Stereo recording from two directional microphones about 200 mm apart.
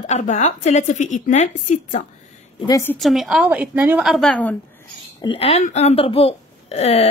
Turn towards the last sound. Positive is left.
turn(degrees=30)  # may be behind; listen again after turning